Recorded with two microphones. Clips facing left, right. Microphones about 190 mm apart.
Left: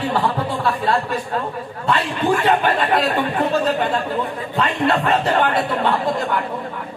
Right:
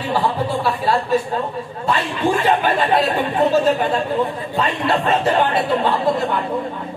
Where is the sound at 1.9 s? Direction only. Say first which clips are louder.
Even; 25° right (ahead or behind).